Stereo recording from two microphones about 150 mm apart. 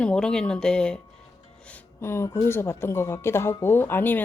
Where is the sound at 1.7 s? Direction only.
15° left (ahead or behind).